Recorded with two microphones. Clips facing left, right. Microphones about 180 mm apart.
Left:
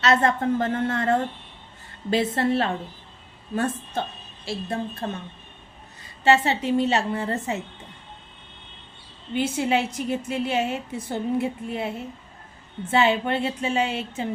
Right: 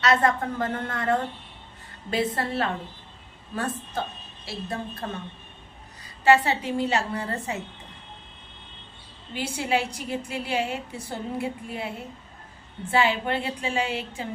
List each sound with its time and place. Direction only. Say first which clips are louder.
0.0 s a woman's voice: left 2 dB; 25° left (ahead or behind)
6.2 s a woman's voice: even; 25° left (ahead or behind)
9.3 s a woman's voice: left 4 dB; 20° left (ahead or behind)
12.9 s a woman's voice: left 3 dB; 25° left (ahead or behind)